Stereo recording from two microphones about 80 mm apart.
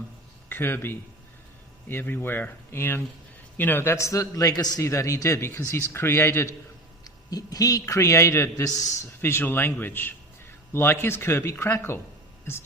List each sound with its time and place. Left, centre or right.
0.4 s a man's voice: left
4.8 s speech: left
7.3 s a man's voice: left
9.2 s speech: left